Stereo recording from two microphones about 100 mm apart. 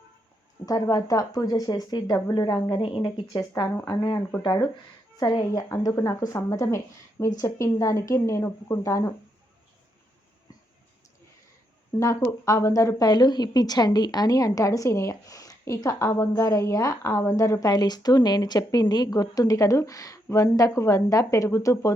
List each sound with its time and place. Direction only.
0.6 s a woman's voice: 35° left (ahead or behind); by 3.2 s 60° left (ahead or behind)
3.3 s a woman's voice: 35° left (ahead or behind)
3.8 s a woman's voice: 50° left (ahead or behind)
5.6 s a woman's voice: 30° left (ahead or behind)
11.9 s a woman's voice: 30° left (ahead or behind)